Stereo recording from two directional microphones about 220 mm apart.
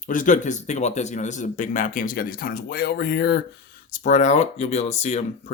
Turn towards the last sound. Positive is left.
turn(degrees=30)  # may be behind; listen again after turning